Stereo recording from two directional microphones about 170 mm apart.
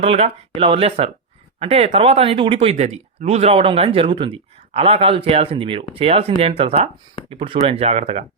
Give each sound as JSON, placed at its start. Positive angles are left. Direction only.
{"t": 0.0, "sound": "speech", "side_deg": -35}